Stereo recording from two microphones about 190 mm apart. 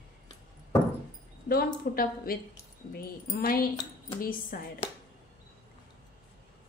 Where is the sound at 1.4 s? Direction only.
50° left (ahead or behind).